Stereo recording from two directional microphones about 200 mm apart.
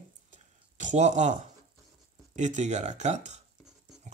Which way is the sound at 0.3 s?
40° right (ahead or behind).